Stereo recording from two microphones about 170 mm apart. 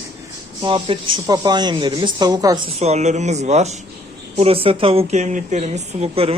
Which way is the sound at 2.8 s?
40° right (ahead or behind).